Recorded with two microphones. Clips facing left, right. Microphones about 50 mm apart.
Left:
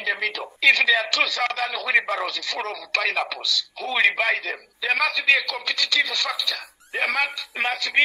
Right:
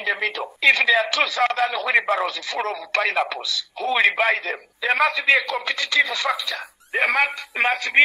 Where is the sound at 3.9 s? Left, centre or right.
Centre.